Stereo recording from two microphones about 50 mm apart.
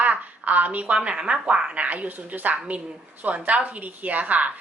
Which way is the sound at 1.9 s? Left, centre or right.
Right.